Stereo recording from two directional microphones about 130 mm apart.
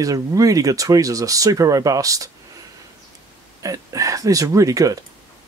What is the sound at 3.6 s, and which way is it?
Speech, 25° right (ahead or behind).